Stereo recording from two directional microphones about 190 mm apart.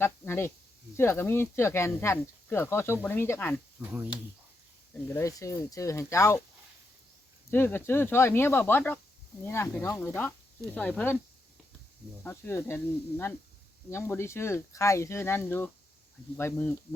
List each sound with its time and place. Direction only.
0.0 s speech: 10° left (ahead or behind)
3.8 s speech: 10° right (ahead or behind)
5.0 s speech: 15° left (ahead or behind)
7.5 s speech: 10° left (ahead or behind)
12.2 s speech: 15° left (ahead or behind)